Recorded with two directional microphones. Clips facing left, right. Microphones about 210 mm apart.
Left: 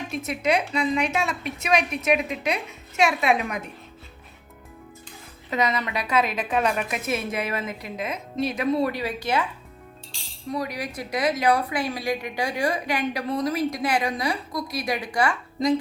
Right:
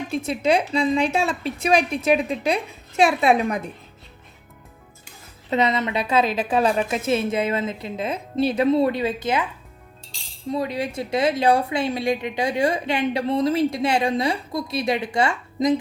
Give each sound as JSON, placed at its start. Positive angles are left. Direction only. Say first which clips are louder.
{"t": 0.1, "sound": "a woman's voice", "louder": "right 4 dB", "side_deg": -30}
{"t": 5.5, "sound": "a woman's voice", "louder": "right 4 dB", "side_deg": -25}
{"t": 10.5, "sound": "a woman's voice", "louder": "right 4 dB", "side_deg": -25}